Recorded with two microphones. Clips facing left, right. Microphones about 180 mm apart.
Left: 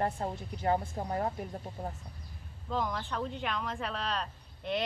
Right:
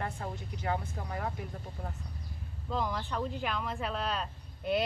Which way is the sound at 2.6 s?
Centre (ahead or behind).